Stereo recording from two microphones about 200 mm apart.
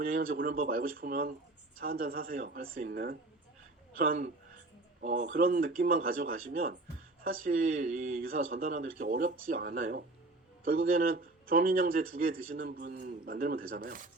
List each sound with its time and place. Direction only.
0.0 s speech: 45° right (ahead or behind)